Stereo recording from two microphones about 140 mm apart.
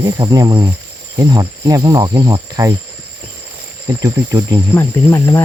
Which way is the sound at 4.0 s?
25° right (ahead or behind).